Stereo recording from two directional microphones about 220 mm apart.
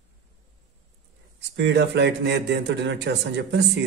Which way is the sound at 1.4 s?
50° right (ahead or behind).